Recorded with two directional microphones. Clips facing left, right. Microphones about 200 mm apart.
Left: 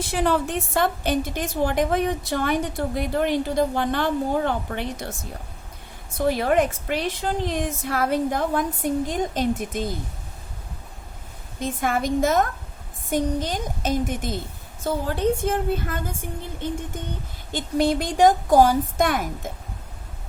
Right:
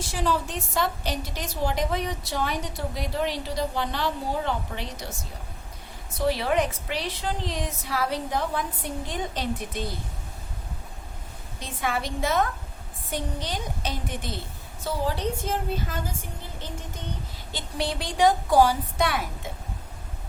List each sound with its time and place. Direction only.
0.0 s a woman's voice: 55° left (ahead or behind)
6.1 s a woman's voice: 50° left (ahead or behind)
11.6 s a woman's voice: 45° left (ahead or behind)